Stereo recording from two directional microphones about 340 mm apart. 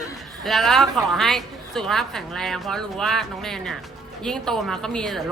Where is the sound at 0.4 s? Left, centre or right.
Centre.